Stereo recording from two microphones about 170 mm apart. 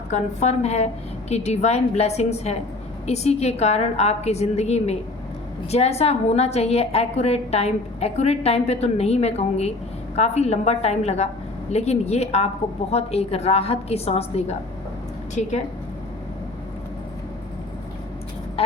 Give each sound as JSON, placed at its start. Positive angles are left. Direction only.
{"t": 0.1, "sound": "a woman's voice", "side_deg": 40}